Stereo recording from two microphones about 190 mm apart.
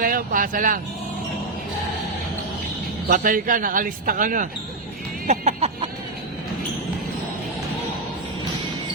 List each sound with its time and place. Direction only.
0.0 s speech: 45° right (ahead or behind)
3.1 s speech: 45° right (ahead or behind)
5.2 s a sound: 40° right (ahead or behind)